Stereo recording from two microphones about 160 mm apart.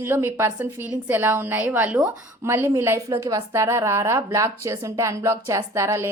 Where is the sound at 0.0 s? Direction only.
15° right (ahead or behind).